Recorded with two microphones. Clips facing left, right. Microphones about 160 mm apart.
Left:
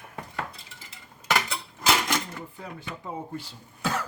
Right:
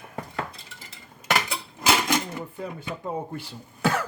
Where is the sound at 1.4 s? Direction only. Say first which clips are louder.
Right 2 dB; 15° right (ahead or behind).